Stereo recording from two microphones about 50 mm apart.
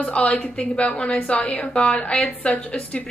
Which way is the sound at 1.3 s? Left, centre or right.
Left.